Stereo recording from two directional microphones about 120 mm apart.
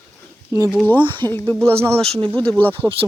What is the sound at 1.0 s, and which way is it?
Speech, 45° right (ahead or behind).